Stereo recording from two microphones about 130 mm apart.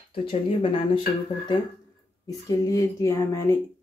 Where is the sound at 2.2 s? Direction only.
25° left (ahead or behind).